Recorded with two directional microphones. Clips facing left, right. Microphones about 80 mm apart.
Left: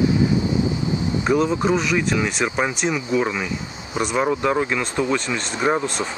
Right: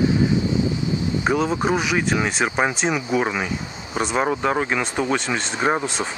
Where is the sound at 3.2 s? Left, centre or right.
Centre.